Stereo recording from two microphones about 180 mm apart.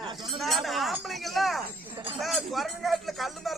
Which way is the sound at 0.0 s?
25° right (ahead or behind).